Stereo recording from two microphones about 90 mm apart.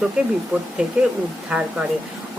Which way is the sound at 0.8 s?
15° right (ahead or behind).